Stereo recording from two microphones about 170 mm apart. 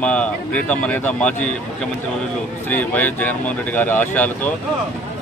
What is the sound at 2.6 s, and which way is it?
Speech, 10° left (ahead or behind).